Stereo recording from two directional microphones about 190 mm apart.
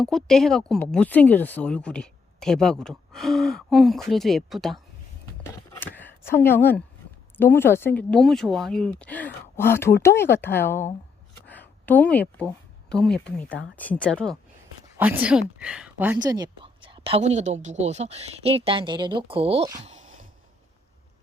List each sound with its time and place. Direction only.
0.0 s speech: centre (ahead or behind)
5.8 s a woman's voice: 10° left (ahead or behind)
14.9 s speech: 10° right (ahead or behind)
16.1 s a woman's voice: 20° right (ahead or behind)
19.8 s a sound: 40° right (ahead or behind)